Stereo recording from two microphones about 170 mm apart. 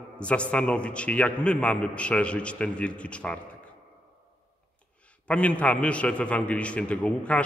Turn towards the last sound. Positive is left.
turn(degrees=5)  # may be behind; listen again after turning